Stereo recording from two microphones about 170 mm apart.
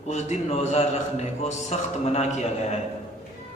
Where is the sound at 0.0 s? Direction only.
40° left (ahead or behind).